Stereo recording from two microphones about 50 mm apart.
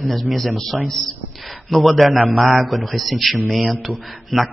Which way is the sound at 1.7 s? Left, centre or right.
Centre.